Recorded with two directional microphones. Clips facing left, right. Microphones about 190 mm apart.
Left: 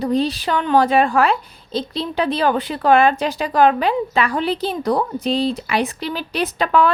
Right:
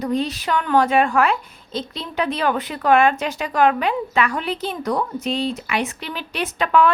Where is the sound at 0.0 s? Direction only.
35° left (ahead or behind).